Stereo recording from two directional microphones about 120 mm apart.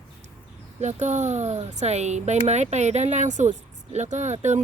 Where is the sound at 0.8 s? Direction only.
75° right (ahead or behind).